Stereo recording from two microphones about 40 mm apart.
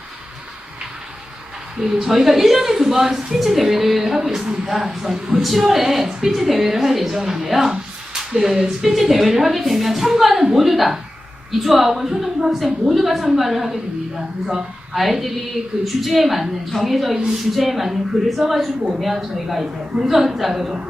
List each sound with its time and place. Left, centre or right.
1.8 s a woman's voice: centre